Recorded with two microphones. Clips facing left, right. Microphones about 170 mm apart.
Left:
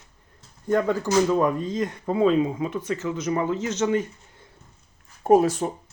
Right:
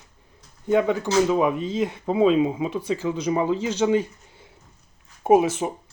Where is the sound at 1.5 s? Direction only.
85° right.